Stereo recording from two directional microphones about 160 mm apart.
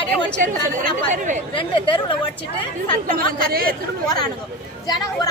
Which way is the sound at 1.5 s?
30° left (ahead or behind).